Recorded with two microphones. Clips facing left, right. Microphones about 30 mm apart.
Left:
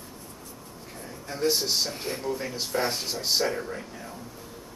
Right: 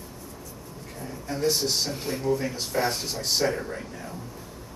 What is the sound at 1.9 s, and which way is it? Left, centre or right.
Speech, left.